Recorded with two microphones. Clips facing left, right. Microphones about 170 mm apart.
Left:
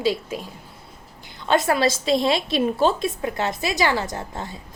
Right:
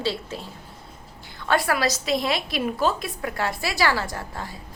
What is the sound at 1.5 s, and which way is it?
A woman's voice, 20° left (ahead or behind).